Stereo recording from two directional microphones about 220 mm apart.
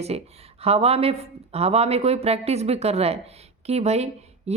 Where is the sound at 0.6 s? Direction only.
25° right (ahead or behind).